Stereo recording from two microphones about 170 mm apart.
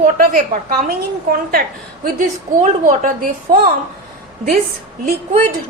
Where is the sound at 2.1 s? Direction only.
50° right (ahead or behind).